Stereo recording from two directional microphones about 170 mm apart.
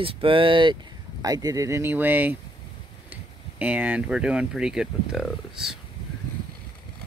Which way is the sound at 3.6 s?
10° right (ahead or behind).